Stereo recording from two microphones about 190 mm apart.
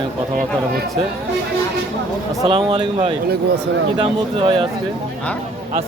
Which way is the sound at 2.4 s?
25° right (ahead or behind).